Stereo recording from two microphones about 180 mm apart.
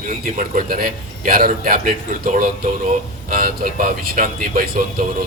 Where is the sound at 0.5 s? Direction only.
50° right (ahead or behind).